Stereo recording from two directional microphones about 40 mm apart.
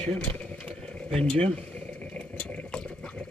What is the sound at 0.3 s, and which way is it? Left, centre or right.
Vehicle, left.